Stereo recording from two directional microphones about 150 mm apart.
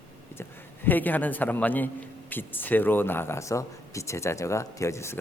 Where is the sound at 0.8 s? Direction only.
10° left (ahead or behind).